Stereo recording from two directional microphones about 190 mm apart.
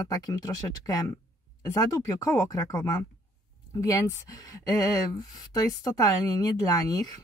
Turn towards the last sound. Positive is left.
turn(degrees=20)  # may be behind; listen again after turning